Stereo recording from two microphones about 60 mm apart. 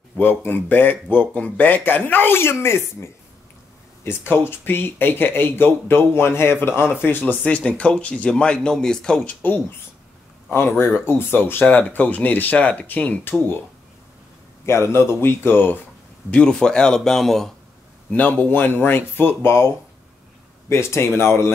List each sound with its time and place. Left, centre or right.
0.2 s speech: left
7.4 s speech: left
10.5 s speech: left
11.6 s speech: left
14.7 s speech: left
16.3 s speech: centre
18.1 s speech: left